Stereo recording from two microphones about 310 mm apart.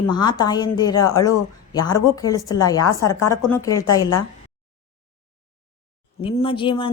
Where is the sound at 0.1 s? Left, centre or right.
Centre.